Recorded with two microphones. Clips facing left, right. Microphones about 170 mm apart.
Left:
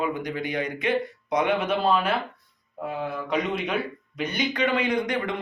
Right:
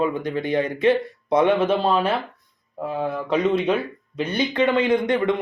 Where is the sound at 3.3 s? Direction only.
30° right (ahead or behind).